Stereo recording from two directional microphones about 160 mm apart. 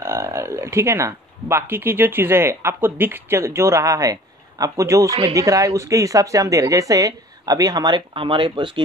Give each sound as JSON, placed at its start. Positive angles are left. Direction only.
{"t": 0.0, "sound": "speech", "side_deg": -15}